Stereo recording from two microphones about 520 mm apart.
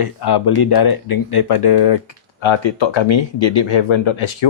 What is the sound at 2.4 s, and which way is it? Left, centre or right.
Speech, left.